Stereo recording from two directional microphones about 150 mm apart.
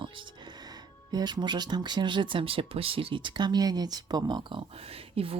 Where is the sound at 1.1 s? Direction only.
30° right (ahead or behind).